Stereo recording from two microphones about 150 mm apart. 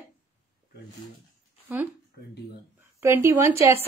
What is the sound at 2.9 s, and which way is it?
Speech, 15° right (ahead or behind).